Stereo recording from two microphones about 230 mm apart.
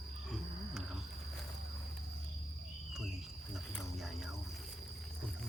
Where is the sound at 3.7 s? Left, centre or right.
Centre.